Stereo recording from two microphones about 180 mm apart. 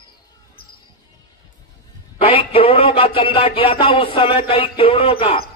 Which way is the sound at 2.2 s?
30° left (ahead or behind).